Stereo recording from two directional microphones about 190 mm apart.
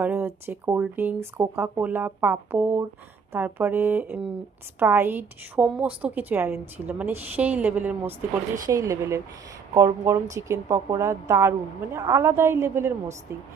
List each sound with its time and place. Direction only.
0.0 s a woman's voice: 10° right (ahead or behind)